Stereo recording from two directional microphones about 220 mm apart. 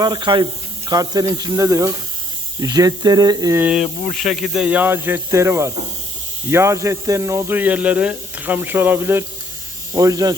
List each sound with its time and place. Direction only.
0.0 s speech: 20° right (ahead or behind)